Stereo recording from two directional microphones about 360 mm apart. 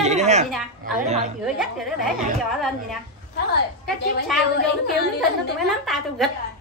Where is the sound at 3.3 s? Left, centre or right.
Left.